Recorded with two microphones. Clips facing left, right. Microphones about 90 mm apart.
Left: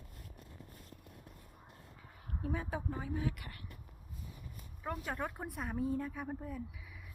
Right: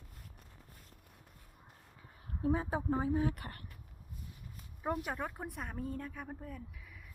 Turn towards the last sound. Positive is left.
turn(degrees=5)  # may be behind; listen again after turning